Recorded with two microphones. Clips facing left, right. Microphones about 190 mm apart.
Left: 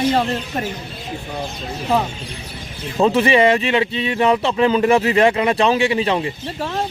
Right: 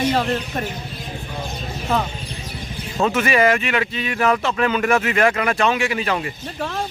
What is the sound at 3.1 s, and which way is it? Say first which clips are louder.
Speech: left 2 dB; 30° left (ahead or behind).